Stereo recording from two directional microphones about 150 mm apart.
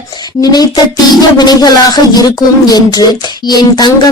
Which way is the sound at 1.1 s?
30° left (ahead or behind).